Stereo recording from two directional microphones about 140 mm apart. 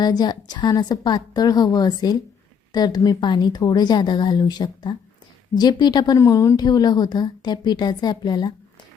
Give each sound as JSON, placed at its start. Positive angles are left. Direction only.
{"t": 0.0, "sound": "a woman's voice", "side_deg": 30}